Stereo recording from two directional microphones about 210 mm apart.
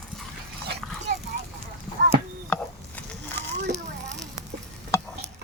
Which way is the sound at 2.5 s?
10° left (ahead or behind).